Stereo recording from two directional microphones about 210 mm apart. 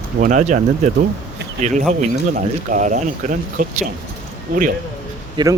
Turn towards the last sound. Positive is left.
turn(degrees=-20)  # may be behind; listen again after turning